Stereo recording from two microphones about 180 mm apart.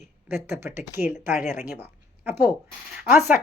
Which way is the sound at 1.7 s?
10° right (ahead or behind).